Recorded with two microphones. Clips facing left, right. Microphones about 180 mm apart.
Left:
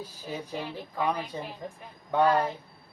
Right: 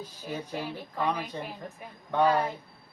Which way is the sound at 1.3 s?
5° left (ahead or behind).